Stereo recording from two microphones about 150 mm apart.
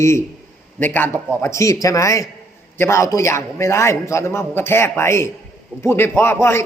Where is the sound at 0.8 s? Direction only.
15° left (ahead or behind).